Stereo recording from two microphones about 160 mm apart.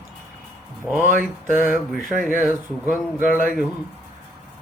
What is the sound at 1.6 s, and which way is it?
Speech, centre (ahead or behind).